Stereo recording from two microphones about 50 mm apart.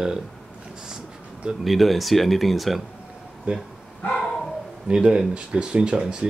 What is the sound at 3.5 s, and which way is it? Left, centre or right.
Speech, right.